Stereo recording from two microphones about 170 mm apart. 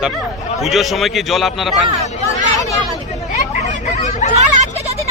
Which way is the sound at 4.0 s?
40° left (ahead or behind).